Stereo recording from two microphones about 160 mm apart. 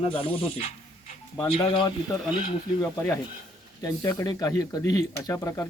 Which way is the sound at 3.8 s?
20° left (ahead or behind).